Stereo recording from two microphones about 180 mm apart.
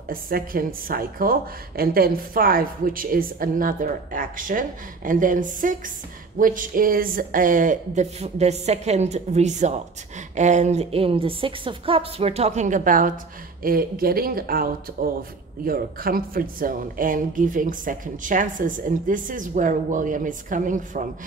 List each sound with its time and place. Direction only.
0.1 s a woman's voice: 55° right (ahead or behind)